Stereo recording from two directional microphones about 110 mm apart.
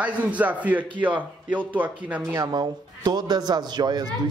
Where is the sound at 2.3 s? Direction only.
40° right (ahead or behind).